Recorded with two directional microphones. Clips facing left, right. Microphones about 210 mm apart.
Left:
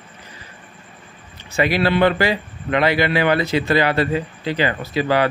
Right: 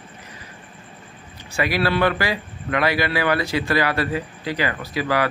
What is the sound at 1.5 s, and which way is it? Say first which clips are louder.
A man's voice: left 3 dB; 25° left (ahead or behind).